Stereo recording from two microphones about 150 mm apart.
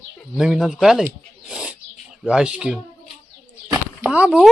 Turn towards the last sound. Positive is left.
turn(degrees=-5)  # may be behind; listen again after turning